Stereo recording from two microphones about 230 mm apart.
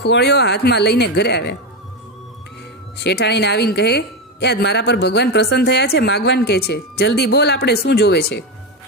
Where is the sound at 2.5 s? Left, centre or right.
Left.